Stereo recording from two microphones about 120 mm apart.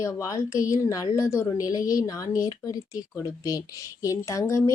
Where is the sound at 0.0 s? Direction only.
25° left (ahead or behind).